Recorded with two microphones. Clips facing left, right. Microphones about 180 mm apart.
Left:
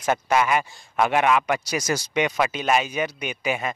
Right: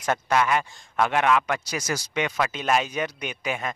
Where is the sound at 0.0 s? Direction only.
5° left (ahead or behind).